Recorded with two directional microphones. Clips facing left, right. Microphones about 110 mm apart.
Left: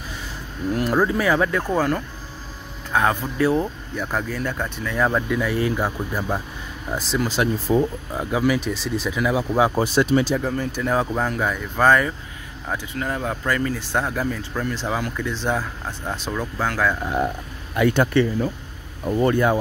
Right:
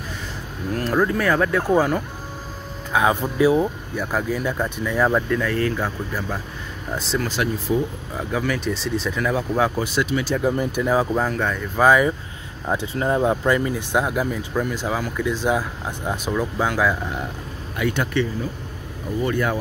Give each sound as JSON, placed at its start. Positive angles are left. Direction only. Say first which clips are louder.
{"t": 0.7, "sound": "speech", "louder": "left 1 dB", "side_deg": 10}
{"t": 1.7, "sound": "speech", "louder": "right 3 dB", "side_deg": -5}
{"t": 5.3, "sound": "speech", "louder": "even", "side_deg": 10}
{"t": 6.9, "sound": "speech", "louder": "left 1 dB", "side_deg": 5}
{"t": 7.7, "sound": "speech", "louder": "left 3 dB", "side_deg": 40}
{"t": 8.2, "sound": "speech", "louder": "left 3 dB", "side_deg": 15}
{"t": 9.8, "sound": "speech", "louder": "left 4 dB", "side_deg": 35}
{"t": 10.5, "sound": "speech", "louder": "right 2 dB", "side_deg": -15}
{"t": 10.8, "sound": "speech", "louder": "right 1 dB", "side_deg": -5}
{"t": 11.8, "sound": "speech", "louder": "right 1 dB", "side_deg": -10}
{"t": 12.6, "sound": "speech", "louder": "right 5 dB", "side_deg": -25}
{"t": 17.7, "sound": "speech", "louder": "left 5 dB", "side_deg": 45}
{"t": 19.3, "sound": "speech", "louder": "left 4 dB", "side_deg": 25}